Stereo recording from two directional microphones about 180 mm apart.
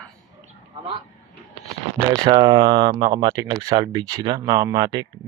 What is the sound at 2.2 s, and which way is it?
Speech, 25° right (ahead or behind).